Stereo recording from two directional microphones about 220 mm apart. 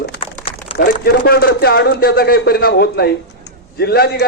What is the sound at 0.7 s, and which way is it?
A man's voice, 45° left (ahead or behind).